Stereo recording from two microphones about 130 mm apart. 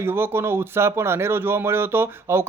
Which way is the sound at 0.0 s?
20° right (ahead or behind).